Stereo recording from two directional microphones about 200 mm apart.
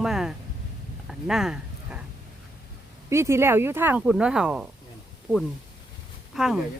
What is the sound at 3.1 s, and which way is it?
Speech, 15° right (ahead or behind).